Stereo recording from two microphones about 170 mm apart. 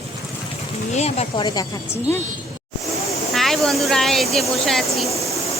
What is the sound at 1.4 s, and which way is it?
Speech, 25° left (ahead or behind).